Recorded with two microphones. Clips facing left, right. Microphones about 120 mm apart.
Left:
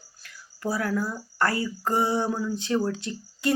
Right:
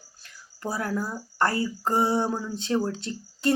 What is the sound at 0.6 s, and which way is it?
Speech, 25° right (ahead or behind).